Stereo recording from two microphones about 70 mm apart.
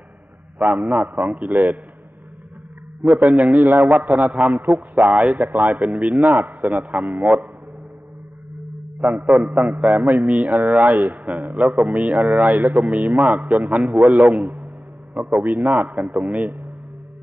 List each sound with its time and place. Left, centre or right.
0.7 s a man's voice: centre
3.0 s a man's voice: right
9.0 s a man's voice: right
12.1 s speech: centre
12.4 s a man's voice: right